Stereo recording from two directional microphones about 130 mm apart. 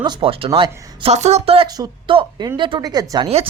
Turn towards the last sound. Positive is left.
turn(degrees=-30)  # may be behind; listen again after turning